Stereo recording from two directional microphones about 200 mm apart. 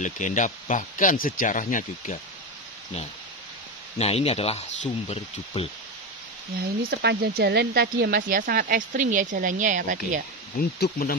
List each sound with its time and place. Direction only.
0.0 s speech: 40° left (ahead or behind)
4.0 s speech: 30° left (ahead or behind)
6.5 s speech: 50° right (ahead or behind)
10.8 s speech: 50° left (ahead or behind)